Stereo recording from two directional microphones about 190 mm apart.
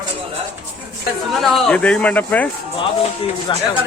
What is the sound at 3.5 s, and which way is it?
Speech, 25° left (ahead or behind).